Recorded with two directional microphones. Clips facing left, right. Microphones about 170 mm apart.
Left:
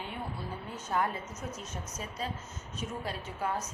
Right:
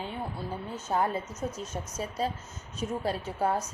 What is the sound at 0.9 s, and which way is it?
Speech, 25° right (ahead or behind).